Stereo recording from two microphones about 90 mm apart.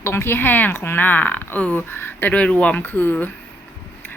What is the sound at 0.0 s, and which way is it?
Speech, 25° left (ahead or behind).